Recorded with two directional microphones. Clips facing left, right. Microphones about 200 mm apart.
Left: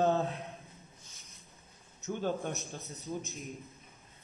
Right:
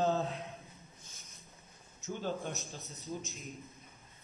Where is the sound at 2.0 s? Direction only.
55° left (ahead or behind).